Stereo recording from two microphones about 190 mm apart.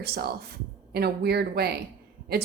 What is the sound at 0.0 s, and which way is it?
Speech, 55° right (ahead or behind).